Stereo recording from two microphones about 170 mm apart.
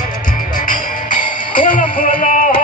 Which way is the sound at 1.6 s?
55° left (ahead or behind).